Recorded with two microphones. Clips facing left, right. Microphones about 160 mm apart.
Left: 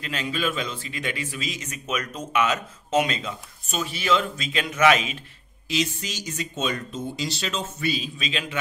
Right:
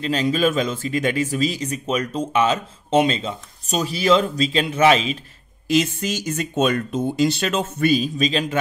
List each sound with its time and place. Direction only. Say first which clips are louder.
0.0 s speech: right 8 dB; 35° right (ahead or behind)
5.7 s speech: right 8 dB; 50° right (ahead or behind)